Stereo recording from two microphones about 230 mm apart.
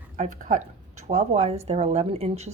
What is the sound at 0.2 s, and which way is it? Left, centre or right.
A woman's voice, right.